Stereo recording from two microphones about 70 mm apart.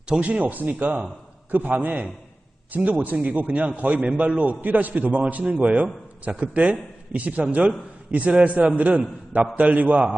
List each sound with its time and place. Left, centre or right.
0.1 s a man's voice: centre